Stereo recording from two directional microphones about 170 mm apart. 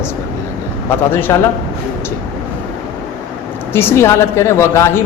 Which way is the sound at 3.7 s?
15° left (ahead or behind).